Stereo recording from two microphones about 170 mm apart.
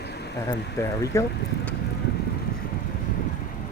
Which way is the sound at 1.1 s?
15° left (ahead or behind).